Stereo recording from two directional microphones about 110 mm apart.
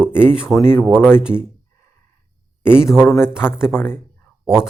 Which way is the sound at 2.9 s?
25° left (ahead or behind).